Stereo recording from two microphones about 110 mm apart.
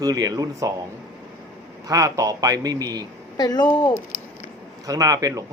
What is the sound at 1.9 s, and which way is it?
Speech, 30° right (ahead or behind).